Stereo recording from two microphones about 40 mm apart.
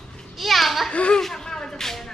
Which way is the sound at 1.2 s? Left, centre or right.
Centre.